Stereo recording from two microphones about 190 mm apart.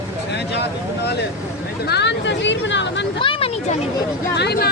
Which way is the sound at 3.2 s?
25° left (ahead or behind).